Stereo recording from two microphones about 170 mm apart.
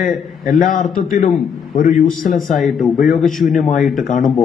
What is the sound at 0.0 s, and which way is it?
A man's voice, 50° left (ahead or behind).